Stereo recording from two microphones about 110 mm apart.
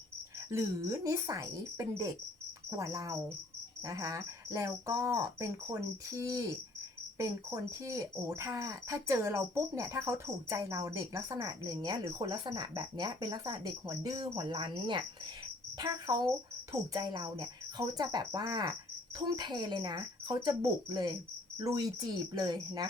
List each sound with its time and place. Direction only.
0.5 s cricket: 30° right (ahead or behind)
7.3 s speech: 25° right (ahead or behind)